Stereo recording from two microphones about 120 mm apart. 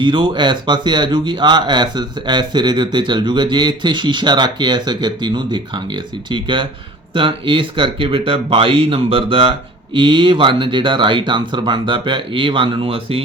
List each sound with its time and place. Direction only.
0.0 s speech: 40° right (ahead or behind)